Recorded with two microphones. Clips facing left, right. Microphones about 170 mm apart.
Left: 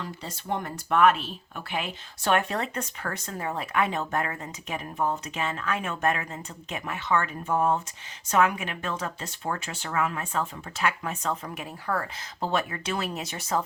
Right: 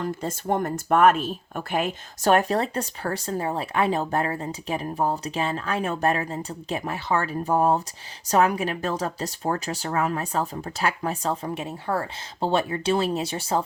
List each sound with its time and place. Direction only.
0.0 s speech: 50° right (ahead or behind); by 13.6 s 30° right (ahead or behind)